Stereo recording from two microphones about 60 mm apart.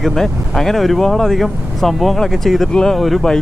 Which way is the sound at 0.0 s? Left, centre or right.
Centre.